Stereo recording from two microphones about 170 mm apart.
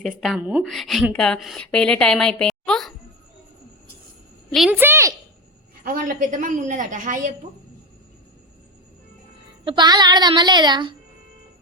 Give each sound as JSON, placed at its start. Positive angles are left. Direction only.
{"t": 0.2, "sound": "a woman's voice", "side_deg": -5}
{"t": 4.7, "sound": "a sound", "side_deg": -15}
{"t": 5.8, "sound": "a woman's voice", "side_deg": -55}
{"t": 9.6, "sound": "speech", "side_deg": -25}